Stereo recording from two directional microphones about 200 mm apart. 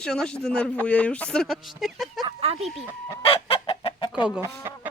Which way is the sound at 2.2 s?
30° right (ahead or behind).